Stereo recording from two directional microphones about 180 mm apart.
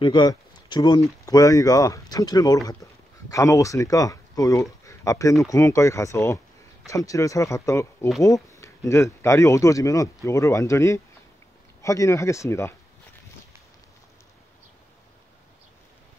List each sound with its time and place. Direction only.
0.0 s speech: 25° left (ahead or behind)